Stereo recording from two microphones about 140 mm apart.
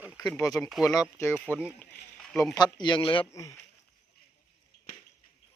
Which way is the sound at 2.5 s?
30° left (ahead or behind).